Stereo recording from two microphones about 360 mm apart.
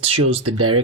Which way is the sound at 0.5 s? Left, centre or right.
Right.